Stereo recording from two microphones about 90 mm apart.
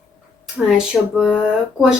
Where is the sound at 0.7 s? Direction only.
5° right (ahead or behind).